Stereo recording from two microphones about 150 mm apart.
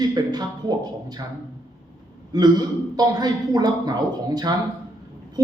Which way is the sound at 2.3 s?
25° right (ahead or behind).